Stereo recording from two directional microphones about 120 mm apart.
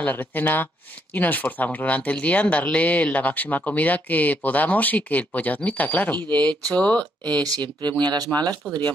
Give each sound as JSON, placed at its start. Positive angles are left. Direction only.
{"t": 0.0, "sound": "speech", "side_deg": 15}
{"t": 7.3, "sound": "speech", "side_deg": -35}